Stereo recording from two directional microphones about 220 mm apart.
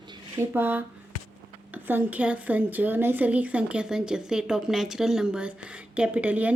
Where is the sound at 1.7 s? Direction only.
10° right (ahead or behind).